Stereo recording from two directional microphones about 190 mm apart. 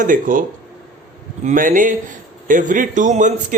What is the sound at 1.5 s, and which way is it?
A man's voice, 45° right (ahead or behind).